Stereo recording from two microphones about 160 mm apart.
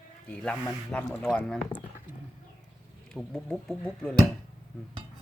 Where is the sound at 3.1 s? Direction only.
5° left (ahead or behind).